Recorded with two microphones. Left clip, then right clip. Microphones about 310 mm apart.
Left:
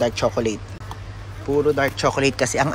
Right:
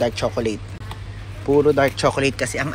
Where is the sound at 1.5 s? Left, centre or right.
Centre.